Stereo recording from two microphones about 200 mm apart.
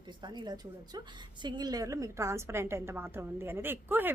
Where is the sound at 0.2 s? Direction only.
20° right (ahead or behind).